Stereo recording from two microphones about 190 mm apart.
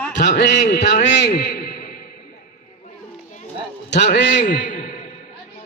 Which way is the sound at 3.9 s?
65° left (ahead or behind).